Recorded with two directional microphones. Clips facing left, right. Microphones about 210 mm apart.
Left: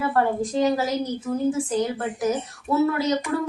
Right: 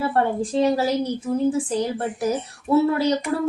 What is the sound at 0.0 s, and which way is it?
A woman's voice, 30° right (ahead or behind).